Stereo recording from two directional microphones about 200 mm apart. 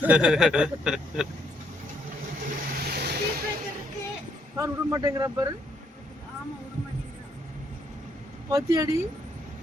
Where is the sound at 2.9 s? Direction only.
50° right (ahead or behind).